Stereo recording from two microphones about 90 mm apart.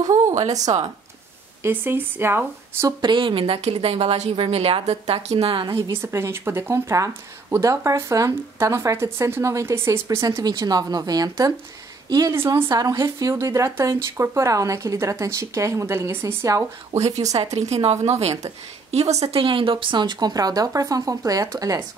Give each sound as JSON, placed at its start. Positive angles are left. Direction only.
{"t": 0.0, "sound": "speech", "side_deg": -40}
{"t": 1.6, "sound": "speech", "side_deg": -25}
{"t": 3.0, "sound": "speech", "side_deg": -60}
{"t": 5.8, "sound": "speech", "side_deg": -30}
{"t": 10.0, "sound": "speech", "side_deg": -40}
{"t": 12.3, "sound": "speech", "side_deg": -30}
{"t": 19.3, "sound": "speech", "side_deg": -80}